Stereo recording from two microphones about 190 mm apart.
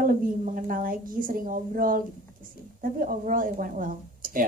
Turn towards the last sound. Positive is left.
turn(degrees=-45)  # may be behind; listen again after turning